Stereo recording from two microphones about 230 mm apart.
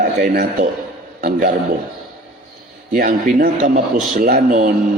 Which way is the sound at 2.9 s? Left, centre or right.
Right.